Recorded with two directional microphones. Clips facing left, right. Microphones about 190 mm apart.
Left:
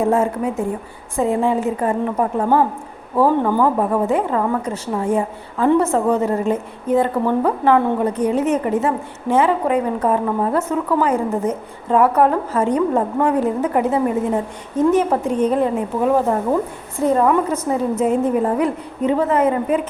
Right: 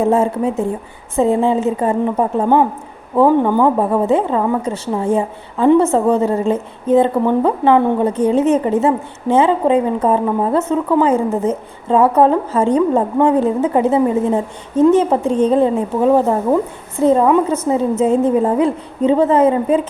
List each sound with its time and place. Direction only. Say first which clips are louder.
0.1 s a woman's voice: right 3 dB; 25° right (ahead or behind)